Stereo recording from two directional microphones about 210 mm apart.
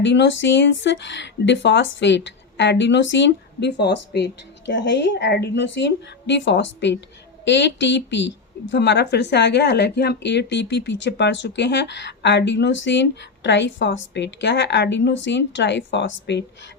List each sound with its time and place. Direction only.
0.0 s speech: 55° left (ahead or behind)